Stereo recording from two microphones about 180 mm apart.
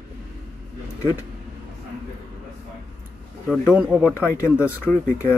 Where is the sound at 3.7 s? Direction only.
5° right (ahead or behind).